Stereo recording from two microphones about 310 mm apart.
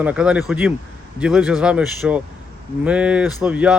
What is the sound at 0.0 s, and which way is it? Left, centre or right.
A man's voice, centre.